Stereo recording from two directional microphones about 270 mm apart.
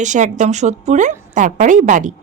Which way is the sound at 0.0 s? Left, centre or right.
Right.